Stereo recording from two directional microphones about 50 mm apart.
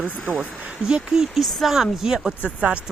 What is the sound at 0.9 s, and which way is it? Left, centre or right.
Speech, centre.